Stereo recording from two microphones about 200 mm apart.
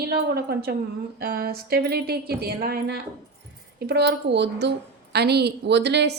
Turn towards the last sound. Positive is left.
turn(degrees=-60)  # may be behind; listen again after turning